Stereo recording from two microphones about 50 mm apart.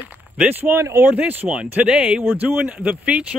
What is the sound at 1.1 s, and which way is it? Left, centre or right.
Speech, right.